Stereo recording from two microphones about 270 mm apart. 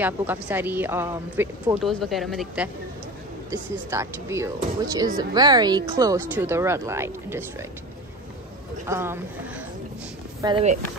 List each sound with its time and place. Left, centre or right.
0.0 s a woman's voice: centre
8.8 s a woman's voice: centre
10.4 s speech: right